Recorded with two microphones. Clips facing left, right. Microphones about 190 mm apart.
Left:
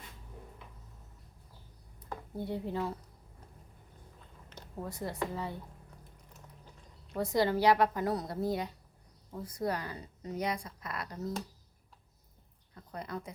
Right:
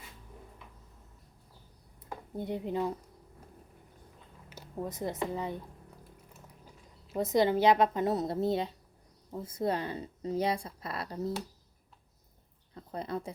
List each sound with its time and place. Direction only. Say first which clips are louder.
2.0 s speech: right 1 dB; 20° right (ahead or behind)
4.8 s a woman's voice: right 3 dB; 20° right (ahead or behind)
7.2 s a woman's voice: right 3 dB; 20° right (ahead or behind)
12.7 s a woman's voice: right 4 dB; 25° right (ahead or behind)